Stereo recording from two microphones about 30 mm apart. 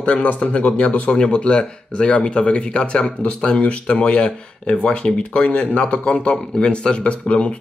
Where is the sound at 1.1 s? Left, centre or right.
Left.